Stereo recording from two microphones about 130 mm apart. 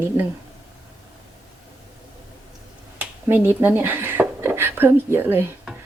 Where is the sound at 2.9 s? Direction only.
15° right (ahead or behind).